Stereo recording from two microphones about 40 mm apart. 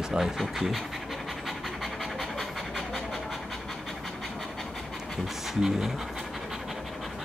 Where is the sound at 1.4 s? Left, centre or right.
Centre.